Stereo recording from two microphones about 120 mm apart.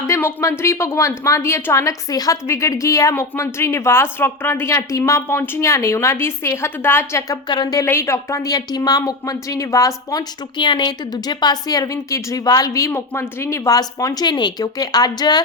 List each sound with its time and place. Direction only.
0.1 s a woman's voice: 20° left (ahead or behind)
7.4 s speech: 35° left (ahead or behind)
7.9 s speech: 20° left (ahead or behind)